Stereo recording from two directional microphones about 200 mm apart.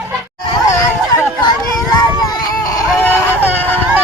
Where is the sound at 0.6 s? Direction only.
15° left (ahead or behind).